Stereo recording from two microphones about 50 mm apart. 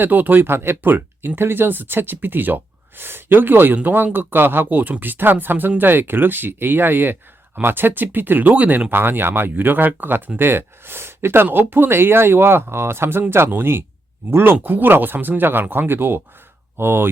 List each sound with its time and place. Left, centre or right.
0.0 s speech: right
8.9 s speech: right